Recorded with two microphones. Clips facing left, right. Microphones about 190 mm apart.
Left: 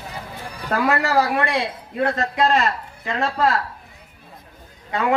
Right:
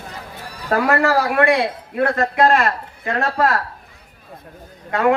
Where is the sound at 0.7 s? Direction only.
50° right (ahead or behind).